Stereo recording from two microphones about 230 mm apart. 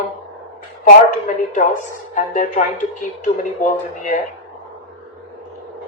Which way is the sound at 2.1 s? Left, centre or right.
Left.